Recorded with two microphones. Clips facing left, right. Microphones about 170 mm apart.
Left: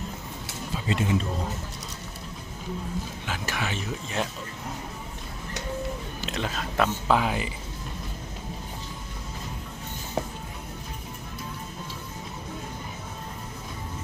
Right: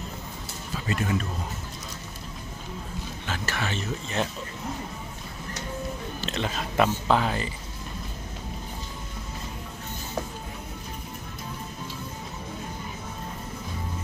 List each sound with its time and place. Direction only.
0.9 s speech: 25° left (ahead or behind)
3.2 s speech: 10° left (ahead or behind)
6.2 s speech: 5° left (ahead or behind)
7.1 s speech: 10° left (ahead or behind)